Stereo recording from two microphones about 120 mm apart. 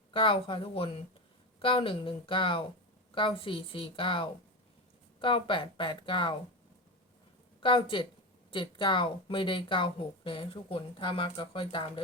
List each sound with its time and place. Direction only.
0.1 s speech: 45° left (ahead or behind)
7.6 s speech: 45° left (ahead or behind)